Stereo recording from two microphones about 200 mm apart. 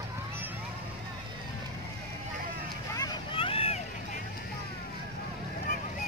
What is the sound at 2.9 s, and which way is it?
Vehicle, 20° left (ahead or behind).